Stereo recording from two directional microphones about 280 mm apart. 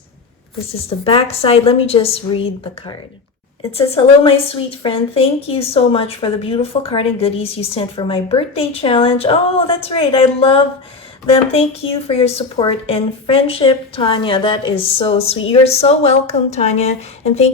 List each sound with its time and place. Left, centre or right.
0.9 s a woman's voice: centre
12.0 s a woman's voice: left